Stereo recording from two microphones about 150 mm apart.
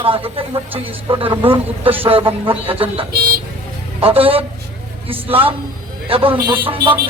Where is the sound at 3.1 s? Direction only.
90° right.